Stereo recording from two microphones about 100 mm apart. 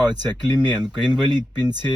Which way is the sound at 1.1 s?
45° right (ahead or behind).